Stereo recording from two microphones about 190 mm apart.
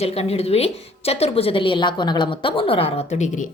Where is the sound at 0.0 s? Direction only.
30° left (ahead or behind).